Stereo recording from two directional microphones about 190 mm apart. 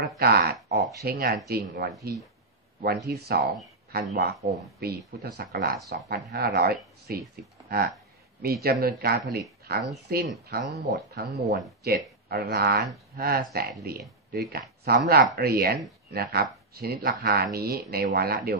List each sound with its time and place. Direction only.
0.2 s speech: 55° right (ahead or behind)
2.8 s speech: 55° right (ahead or behind)
8.4 s speech: 55° right (ahead or behind)